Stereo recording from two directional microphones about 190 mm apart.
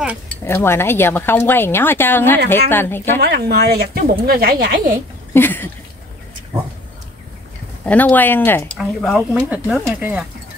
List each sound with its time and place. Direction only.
0.3 s speech: 15° left (ahead or behind)
3.2 s speech: 55° right (ahead or behind)
5.3 s a sound: 10° left (ahead or behind)
7.8 s speech: 10° left (ahead or behind)
8.7 s speech: centre (ahead or behind)